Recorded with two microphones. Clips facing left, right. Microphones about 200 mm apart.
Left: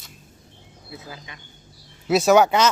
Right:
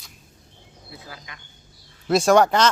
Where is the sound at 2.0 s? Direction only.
5° left (ahead or behind).